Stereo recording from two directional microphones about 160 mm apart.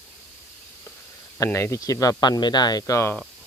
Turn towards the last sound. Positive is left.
turn(degrees=20)  # may be behind; listen again after turning